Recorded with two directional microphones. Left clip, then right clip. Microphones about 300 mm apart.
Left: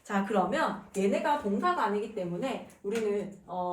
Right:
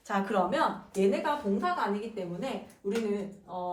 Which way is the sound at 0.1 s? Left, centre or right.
Centre.